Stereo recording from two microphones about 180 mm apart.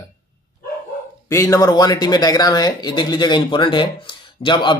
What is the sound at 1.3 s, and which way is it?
Speech, 15° left (ahead or behind).